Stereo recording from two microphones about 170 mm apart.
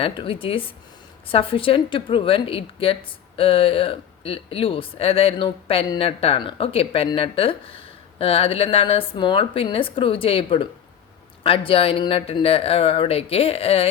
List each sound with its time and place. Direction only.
0.0 s a woman's voice: 30° left (ahead or behind)